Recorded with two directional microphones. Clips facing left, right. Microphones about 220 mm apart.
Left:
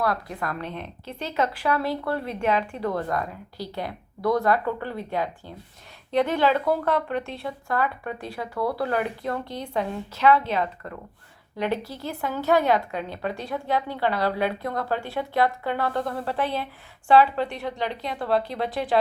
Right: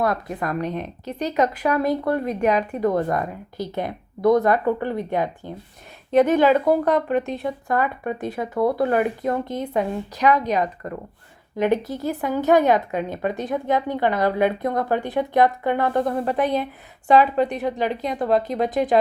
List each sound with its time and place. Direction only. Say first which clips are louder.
0.0 s a woman's voice: right 4 dB; 20° right (ahead or behind)